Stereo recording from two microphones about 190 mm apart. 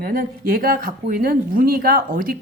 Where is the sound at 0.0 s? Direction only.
50° right (ahead or behind).